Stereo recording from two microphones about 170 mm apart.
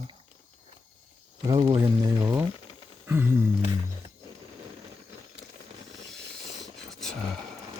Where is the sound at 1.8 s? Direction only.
15° right (ahead or behind).